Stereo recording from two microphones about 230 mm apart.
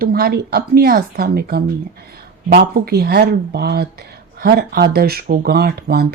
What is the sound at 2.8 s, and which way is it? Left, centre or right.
Speech, right.